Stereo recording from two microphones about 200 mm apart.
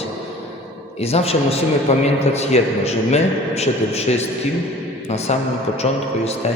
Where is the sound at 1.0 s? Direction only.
30° left (ahead or behind).